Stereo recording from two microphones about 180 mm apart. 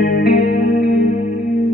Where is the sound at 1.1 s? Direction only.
45° left (ahead or behind).